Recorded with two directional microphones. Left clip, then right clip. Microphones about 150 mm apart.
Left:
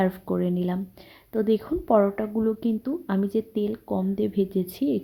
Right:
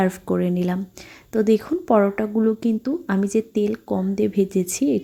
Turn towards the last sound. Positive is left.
turn(degrees=-20)  # may be behind; listen again after turning